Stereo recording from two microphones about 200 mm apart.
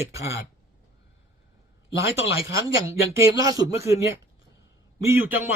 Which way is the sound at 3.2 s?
15° right (ahead or behind).